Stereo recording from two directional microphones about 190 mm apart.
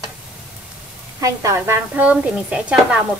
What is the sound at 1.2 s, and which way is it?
A woman's voice, 15° right (ahead or behind).